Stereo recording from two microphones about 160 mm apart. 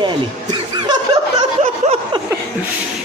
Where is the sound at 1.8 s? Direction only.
45° right (ahead or behind).